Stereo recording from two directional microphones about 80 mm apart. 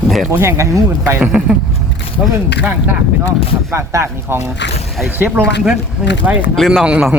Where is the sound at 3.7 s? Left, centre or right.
Right.